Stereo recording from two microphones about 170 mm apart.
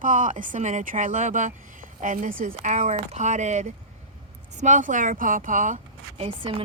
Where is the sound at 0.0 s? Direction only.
50° right (ahead or behind).